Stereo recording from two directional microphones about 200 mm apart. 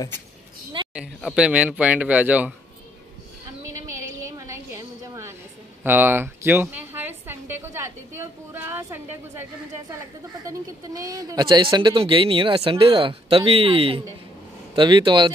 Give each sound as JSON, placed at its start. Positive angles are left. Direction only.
{"t": 0.9, "sound": "a woman's voice", "side_deg": -5}
{"t": 4.4, "sound": "a sound", "side_deg": -15}
{"t": 5.9, "sound": "a woman's voice", "side_deg": -10}